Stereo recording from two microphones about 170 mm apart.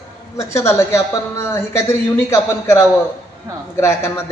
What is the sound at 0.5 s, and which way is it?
A woman's voice, 15° left (ahead or behind).